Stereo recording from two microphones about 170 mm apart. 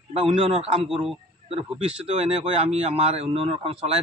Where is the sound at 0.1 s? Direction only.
35° right (ahead or behind).